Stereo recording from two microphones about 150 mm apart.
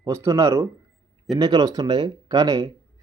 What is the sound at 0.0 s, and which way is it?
Speech, 20° right (ahead or behind).